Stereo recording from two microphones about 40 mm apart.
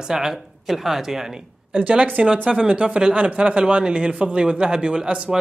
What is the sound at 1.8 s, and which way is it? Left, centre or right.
Speech, right.